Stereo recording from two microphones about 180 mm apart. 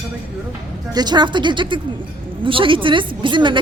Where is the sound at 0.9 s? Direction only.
25° right (ahead or behind).